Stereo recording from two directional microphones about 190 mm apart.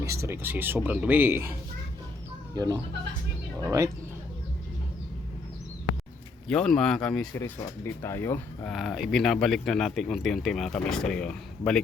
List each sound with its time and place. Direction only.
0.0 s speech: 15° right (ahead or behind)
2.6 s speech: 20° right (ahead or behind)
6.5 s speech: 5° left (ahead or behind)
8.7 s speech: centre (ahead or behind)